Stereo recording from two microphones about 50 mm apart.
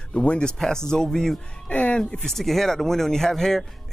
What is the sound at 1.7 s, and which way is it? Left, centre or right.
Speech, left.